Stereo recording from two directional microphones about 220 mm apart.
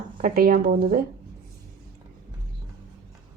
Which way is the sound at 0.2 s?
40° right (ahead or behind).